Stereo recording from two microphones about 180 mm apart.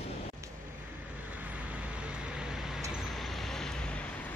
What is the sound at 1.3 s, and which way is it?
Vehicle, 10° right (ahead or behind).